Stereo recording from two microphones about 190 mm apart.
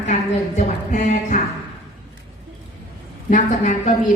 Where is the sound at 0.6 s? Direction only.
40° left (ahead or behind).